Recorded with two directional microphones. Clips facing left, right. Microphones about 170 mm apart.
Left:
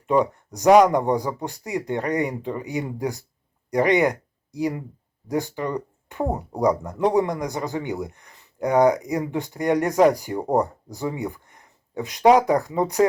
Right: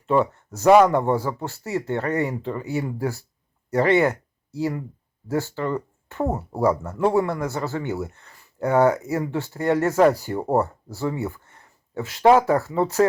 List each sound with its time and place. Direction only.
0.1 s speech: 15° left (ahead or behind)